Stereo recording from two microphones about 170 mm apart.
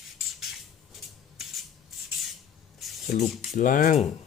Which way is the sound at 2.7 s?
Centre (ahead or behind).